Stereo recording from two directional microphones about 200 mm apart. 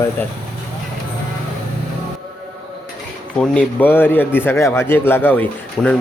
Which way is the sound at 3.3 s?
5° left (ahead or behind).